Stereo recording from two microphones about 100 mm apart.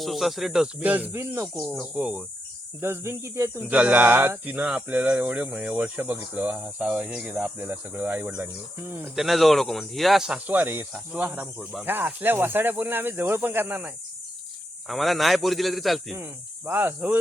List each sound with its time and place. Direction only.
0.0 s speech: centre (ahead or behind)
0.8 s speech: 15° right (ahead or behind)
2.0 s speech: 10° right (ahead or behind)
2.8 s speech: 25° right (ahead or behind)
9.1 s speech: centre (ahead or behind); by 10.8 s 20° right (ahead or behind)
11.6 s speech: centre (ahead or behind)
11.9 s speech: 20° right (ahead or behind)
14.8 s speech: centre (ahead or behind)
16.1 s speech: 25° right (ahead or behind)